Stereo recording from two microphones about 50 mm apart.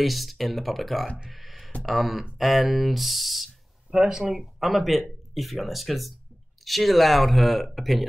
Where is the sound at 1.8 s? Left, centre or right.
Centre.